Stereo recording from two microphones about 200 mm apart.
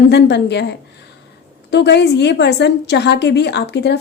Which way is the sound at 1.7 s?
60° left (ahead or behind).